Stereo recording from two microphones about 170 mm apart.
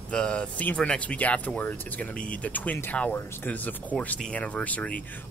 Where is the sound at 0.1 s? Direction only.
5° left (ahead or behind).